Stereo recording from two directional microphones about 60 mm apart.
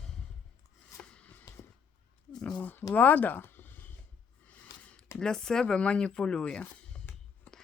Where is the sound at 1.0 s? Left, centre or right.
Centre.